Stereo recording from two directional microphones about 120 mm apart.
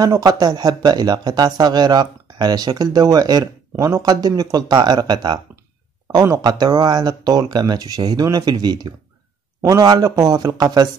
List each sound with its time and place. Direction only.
0.0 s speech: 35° right (ahead or behind)